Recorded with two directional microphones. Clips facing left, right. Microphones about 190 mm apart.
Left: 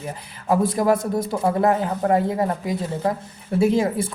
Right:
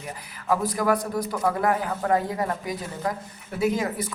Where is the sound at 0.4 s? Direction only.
25° left (ahead or behind).